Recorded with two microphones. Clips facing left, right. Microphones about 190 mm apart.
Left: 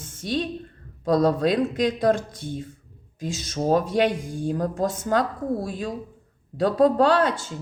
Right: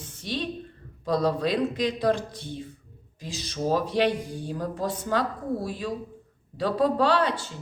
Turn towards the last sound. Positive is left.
turn(degrees=45)  # may be behind; listen again after turning